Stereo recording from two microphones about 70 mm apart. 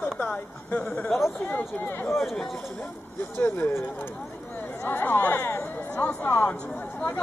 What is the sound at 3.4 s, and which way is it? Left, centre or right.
Speech, left.